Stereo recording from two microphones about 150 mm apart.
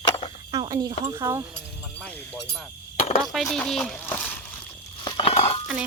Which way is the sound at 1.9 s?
10° left (ahead or behind).